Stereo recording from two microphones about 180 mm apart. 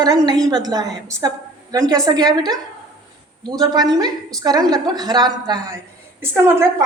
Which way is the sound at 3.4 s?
20° right (ahead or behind).